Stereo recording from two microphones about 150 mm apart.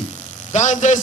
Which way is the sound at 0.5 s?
55° left (ahead or behind).